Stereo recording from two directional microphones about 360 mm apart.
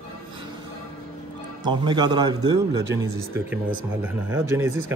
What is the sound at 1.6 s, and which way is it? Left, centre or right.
Speech, centre.